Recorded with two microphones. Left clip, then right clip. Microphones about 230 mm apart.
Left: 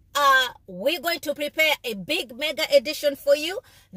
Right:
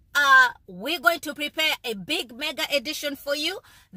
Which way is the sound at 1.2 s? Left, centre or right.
Centre.